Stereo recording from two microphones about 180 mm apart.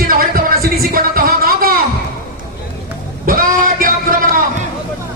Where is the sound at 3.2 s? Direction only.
50° right (ahead or behind).